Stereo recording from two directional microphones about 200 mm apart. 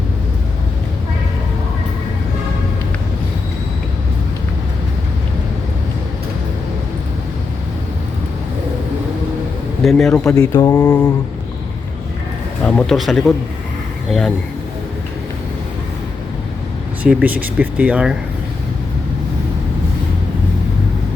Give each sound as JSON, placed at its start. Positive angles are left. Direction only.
{"t": 9.8, "sound": "speech", "side_deg": 0}
{"t": 10.1, "sound": "mantra", "side_deg": 10}
{"t": 12.6, "sound": "speech", "side_deg": 0}
{"t": 17.0, "sound": "speech", "side_deg": -5}